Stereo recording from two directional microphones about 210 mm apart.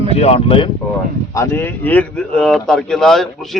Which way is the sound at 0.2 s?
30° left (ahead or behind).